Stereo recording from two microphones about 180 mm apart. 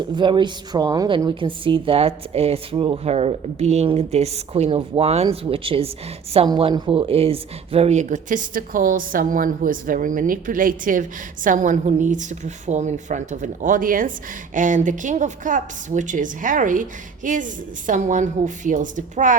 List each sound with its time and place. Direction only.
0.2 s a woman's voice: 25° right (ahead or behind); by 19.4 s 45° right (ahead or behind)